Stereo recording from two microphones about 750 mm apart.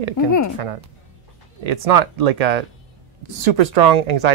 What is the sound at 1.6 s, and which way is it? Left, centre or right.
Speech, right.